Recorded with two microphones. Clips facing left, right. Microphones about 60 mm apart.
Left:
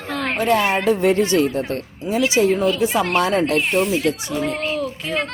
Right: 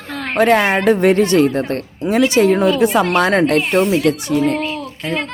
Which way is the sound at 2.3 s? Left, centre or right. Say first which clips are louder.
Right 3 dB; right.